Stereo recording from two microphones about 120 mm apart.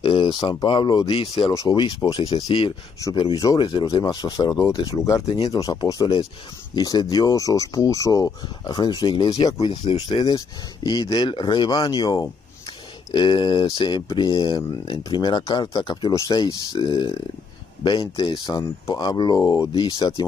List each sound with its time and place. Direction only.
0.0 s speech: 45° left (ahead or behind)
1.5 s speech: 25° left (ahead or behind)
1.8 s speech: 40° left (ahead or behind)
2.1 s speech: 55° left (ahead or behind)
3.2 s speech: 35° left (ahead or behind)
3.8 s speech: 30° left (ahead or behind)